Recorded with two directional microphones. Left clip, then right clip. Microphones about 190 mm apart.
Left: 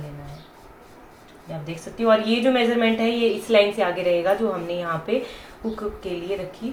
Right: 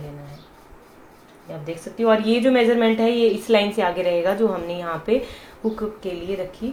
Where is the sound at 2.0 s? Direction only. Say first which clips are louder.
Right 1 dB; 50° right (ahead or behind).